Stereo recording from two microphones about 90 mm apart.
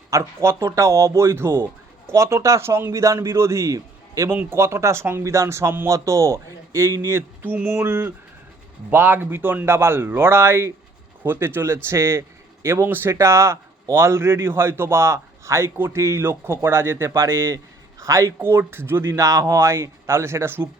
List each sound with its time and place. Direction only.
0.1 s a man's voice: 35° right (ahead or behind)